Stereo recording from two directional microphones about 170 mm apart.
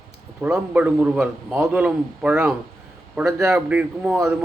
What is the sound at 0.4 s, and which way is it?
Speech, 10° right (ahead or behind).